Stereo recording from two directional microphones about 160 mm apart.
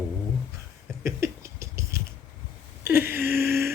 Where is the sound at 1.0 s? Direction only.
15° right (ahead or behind).